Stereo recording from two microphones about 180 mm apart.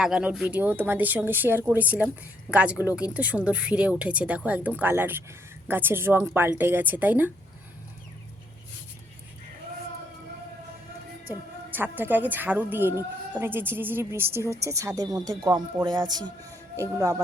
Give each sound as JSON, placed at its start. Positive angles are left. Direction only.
{"t": 0.0, "sound": "a woman's voice", "side_deg": -5}
{"t": 11.3, "sound": "a woman's voice", "side_deg": -10}